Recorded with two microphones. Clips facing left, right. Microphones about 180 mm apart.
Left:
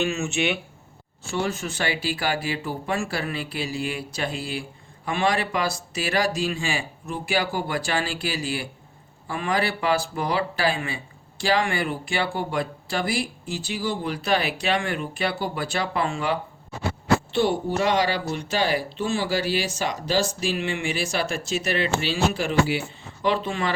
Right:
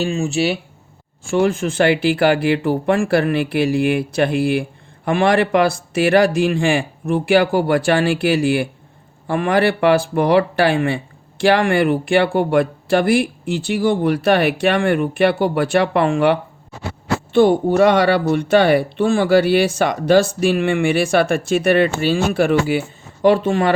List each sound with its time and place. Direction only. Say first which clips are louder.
0.0 s speech: right 6 dB; 35° right (ahead or behind)
1.2 s speech: right 10 dB; 50° right (ahead or behind)